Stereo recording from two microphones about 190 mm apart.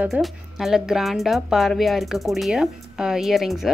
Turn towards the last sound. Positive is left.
turn(degrees=0)  # may be behind; listen again after turning